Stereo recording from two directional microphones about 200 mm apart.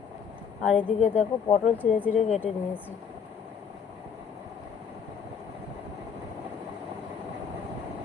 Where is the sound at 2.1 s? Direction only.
35° left (ahead or behind).